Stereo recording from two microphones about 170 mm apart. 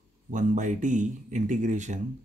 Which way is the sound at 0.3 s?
45° right (ahead or behind).